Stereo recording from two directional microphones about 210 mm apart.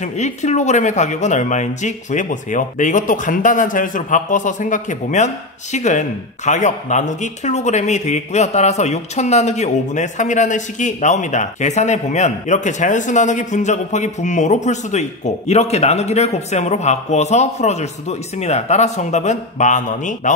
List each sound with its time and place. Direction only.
0.0 s speech: 35° left (ahead or behind)